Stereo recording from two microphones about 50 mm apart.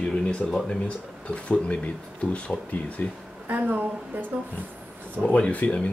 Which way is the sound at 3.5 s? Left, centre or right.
Right.